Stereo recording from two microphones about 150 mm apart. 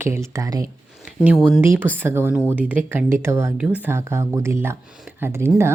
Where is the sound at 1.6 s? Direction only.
15° right (ahead or behind).